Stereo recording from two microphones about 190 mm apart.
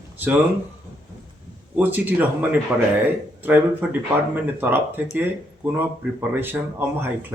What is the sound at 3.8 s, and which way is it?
Speech, 10° right (ahead or behind).